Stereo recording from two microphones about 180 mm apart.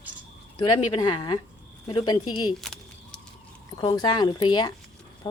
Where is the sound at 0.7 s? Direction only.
25° left (ahead or behind).